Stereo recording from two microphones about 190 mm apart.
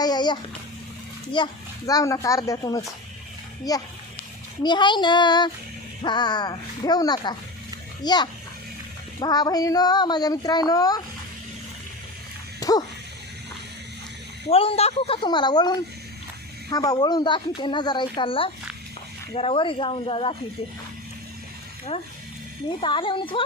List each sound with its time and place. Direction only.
0.0 s a sound: 20° left (ahead or behind)
1.4 s speech: 25° left (ahead or behind)
12.5 s dog: 20° left (ahead or behind)
14.5 s speech: 30° left (ahead or behind)
21.9 s speech: 30° left (ahead or behind)